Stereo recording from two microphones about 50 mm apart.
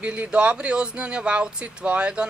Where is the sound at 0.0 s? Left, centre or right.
Right.